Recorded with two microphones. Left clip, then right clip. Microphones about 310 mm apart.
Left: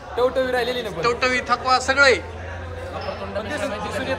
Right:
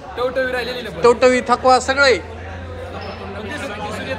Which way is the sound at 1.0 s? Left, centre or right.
Centre.